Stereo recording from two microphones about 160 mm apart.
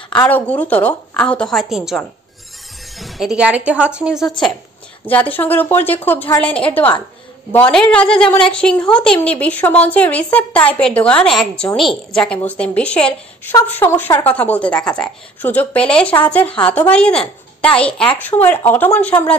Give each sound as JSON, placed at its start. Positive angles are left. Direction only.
{"t": 0.1, "sound": "a woman's voice", "side_deg": 10}